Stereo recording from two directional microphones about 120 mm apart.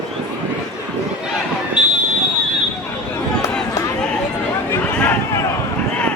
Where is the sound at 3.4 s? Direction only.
25° left (ahead or behind).